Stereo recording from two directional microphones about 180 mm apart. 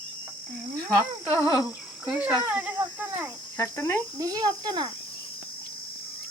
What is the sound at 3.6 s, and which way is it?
Cricket, 15° left (ahead or behind).